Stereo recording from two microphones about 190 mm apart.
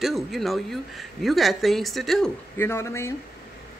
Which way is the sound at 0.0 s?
Centre (ahead or behind).